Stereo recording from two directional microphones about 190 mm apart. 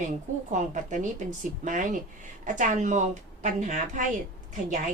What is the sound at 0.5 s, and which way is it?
A woman's voice, 40° right (ahead or behind).